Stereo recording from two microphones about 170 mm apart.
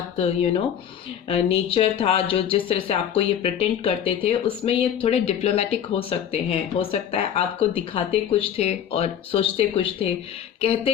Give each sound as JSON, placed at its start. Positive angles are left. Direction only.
{"t": 1.3, "sound": "speech", "side_deg": 35}